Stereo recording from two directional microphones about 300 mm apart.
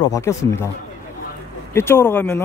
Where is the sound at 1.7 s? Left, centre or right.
Centre.